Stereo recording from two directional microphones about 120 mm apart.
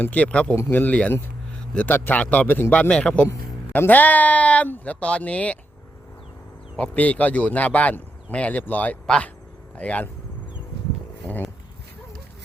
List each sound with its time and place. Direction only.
0.0 s speech: 15° left (ahead or behind)
6.7 s speech: 10° left (ahead or behind)